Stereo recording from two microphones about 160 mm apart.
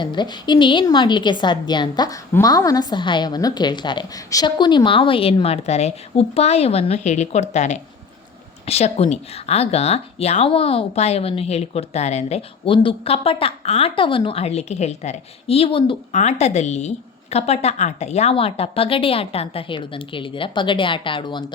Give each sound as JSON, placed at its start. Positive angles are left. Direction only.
{"t": 0.0, "sound": "a woman's voice", "side_deg": 30}